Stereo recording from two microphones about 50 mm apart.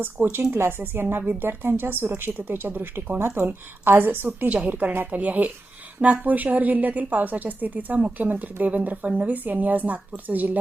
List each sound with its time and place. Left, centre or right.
0.0 s a woman's voice: right
4.4 s a woman's voice: right